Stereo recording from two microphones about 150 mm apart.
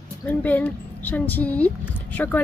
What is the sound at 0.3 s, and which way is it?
Speech, 10° left (ahead or behind).